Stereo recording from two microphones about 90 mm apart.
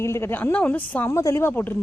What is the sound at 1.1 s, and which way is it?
Speech, 35° left (ahead or behind).